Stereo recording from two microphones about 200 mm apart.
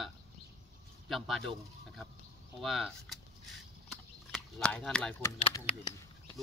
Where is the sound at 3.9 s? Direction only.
Centre (ahead or behind).